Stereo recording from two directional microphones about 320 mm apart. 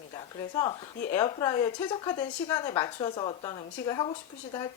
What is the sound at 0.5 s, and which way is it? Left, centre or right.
A woman's voice, centre.